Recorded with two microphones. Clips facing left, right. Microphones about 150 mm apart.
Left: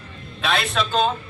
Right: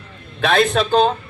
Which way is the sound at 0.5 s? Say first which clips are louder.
Right 7 dB; 45° right (ahead or behind).